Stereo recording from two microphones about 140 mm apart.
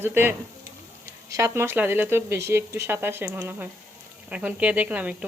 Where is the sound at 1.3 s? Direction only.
20° right (ahead or behind).